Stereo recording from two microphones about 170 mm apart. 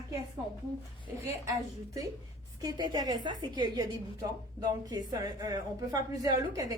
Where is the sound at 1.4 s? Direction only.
20° right (ahead or behind).